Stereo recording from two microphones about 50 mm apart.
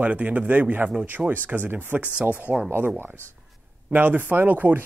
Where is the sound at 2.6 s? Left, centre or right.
Right.